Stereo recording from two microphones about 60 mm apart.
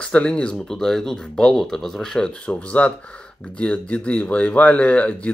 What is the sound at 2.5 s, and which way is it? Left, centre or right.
Speech, left.